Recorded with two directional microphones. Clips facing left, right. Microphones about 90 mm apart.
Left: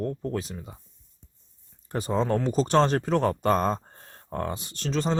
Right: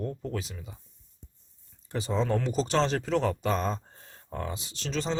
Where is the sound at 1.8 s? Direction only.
50° left (ahead or behind).